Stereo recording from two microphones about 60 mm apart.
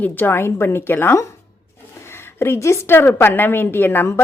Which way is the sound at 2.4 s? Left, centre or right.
Left.